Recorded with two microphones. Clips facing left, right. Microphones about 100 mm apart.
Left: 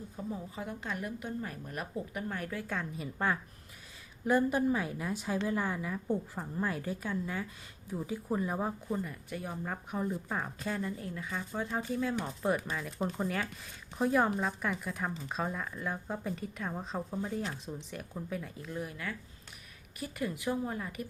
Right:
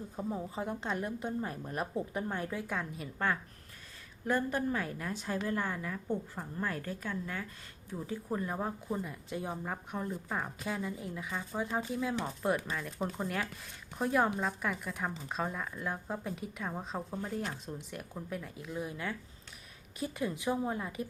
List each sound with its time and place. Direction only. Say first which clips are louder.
0.2 s a woman's voice: right 3 dB; 30° right (ahead or behind)
2.7 s speech: even; centre (ahead or behind)
4.3 s a woman's voice: left 4 dB; 10° left (ahead or behind)
8.9 s speech: left 1 dB; 10° right (ahead or behind)
9.3 s a woman's voice: right 3 dB; 20° right (ahead or behind)
9.6 s speech: left 2 dB; centre (ahead or behind)
18.9 s a woman's voice: right 2 dB; 25° right (ahead or behind)